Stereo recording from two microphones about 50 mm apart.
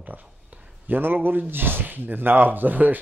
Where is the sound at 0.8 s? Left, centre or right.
Right.